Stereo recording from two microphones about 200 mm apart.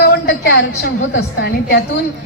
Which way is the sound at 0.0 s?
55° left (ahead or behind).